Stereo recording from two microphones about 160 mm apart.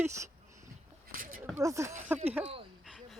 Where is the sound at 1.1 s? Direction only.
60° right (ahead or behind).